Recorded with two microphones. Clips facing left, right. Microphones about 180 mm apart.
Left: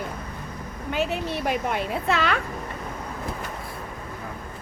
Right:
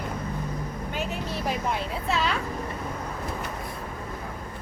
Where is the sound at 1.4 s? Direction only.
65° left (ahead or behind).